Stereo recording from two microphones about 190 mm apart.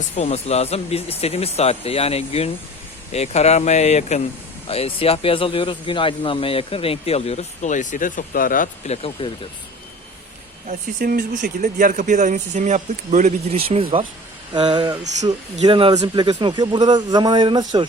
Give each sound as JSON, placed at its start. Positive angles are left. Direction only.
{"t": 0.2, "sound": "speech", "side_deg": 35}
{"t": 10.7, "sound": "a man's voice", "side_deg": -50}